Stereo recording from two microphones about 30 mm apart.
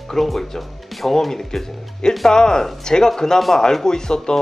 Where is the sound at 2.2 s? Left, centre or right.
Centre.